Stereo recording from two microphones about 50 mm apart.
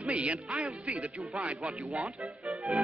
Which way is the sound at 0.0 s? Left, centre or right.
Right.